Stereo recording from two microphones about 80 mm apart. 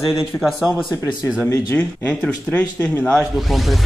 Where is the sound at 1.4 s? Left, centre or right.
Left.